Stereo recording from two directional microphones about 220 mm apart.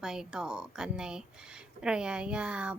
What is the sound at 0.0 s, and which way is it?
A woman's voice, centre (ahead or behind).